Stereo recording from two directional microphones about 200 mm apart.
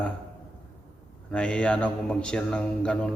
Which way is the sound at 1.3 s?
5° left (ahead or behind).